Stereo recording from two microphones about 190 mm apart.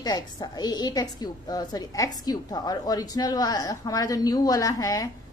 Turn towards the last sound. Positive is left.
turn(degrees=20)  # may be behind; listen again after turning